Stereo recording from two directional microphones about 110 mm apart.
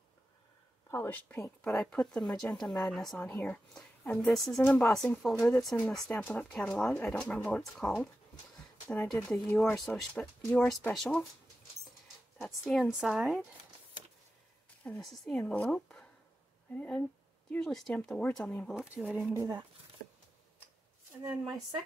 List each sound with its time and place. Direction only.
0.8 s speech: 20° left (ahead or behind); by 11.2 s centre (ahead or behind)
12.4 s speech: 5° left (ahead or behind)
15.0 s speech: 5° left (ahead or behind)
18.9 s speech: 5° right (ahead or behind)
19.3 s speech: 35° right (ahead or behind)